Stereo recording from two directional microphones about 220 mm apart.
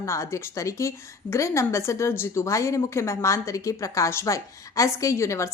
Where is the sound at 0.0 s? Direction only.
15° left (ahead or behind).